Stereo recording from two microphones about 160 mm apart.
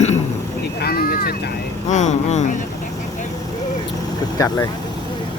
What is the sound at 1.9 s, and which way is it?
Speech, 45° left (ahead or behind).